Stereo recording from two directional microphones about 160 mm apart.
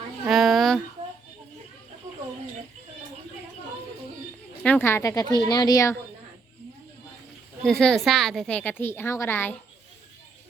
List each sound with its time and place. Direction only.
0.3 s a sound: centre (ahead or behind)
4.6 s a woman's voice: 10° left (ahead or behind)
7.6 s a woman's voice: 5° left (ahead or behind)